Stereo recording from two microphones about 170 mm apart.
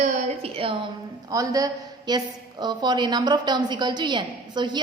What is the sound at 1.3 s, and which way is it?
A woman's voice, 20° right (ahead or behind).